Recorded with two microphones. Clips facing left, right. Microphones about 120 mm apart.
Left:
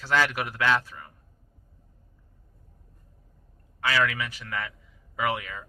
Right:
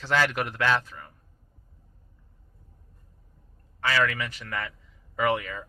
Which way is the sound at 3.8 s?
5° left (ahead or behind).